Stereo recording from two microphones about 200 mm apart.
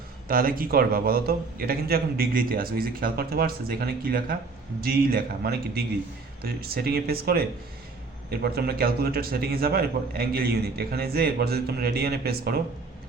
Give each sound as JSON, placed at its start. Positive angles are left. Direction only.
{"t": 0.3, "sound": "a man's voice", "side_deg": -45}